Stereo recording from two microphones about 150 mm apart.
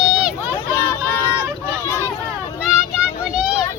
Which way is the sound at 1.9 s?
15° left (ahead or behind).